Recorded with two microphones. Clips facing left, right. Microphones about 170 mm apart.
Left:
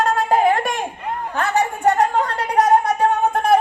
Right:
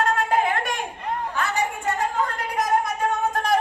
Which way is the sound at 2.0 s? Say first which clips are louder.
Left 6 dB; 70° left (ahead or behind).